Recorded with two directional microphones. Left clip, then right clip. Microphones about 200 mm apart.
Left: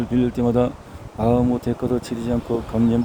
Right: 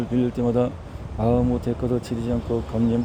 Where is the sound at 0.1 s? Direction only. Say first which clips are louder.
Left 2 dB; 15° left (ahead or behind).